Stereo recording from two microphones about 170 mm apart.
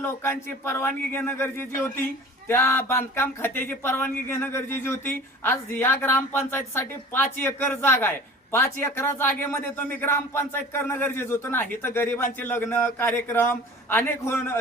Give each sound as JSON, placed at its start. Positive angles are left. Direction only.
{"t": 0.0, "sound": "a man's voice", "side_deg": 15}